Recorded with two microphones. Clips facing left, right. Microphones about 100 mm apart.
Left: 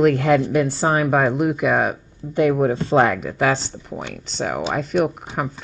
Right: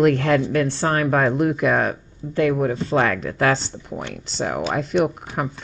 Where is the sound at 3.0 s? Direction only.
10° left (ahead or behind).